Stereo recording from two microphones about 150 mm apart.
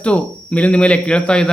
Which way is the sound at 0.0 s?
10° left (ahead or behind).